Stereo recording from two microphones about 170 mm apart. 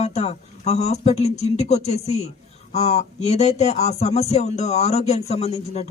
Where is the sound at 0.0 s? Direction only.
40° left (ahead or behind).